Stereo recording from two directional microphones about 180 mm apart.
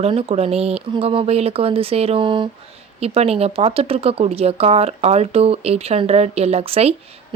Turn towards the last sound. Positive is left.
turn(degrees=-35)  # may be behind; listen again after turning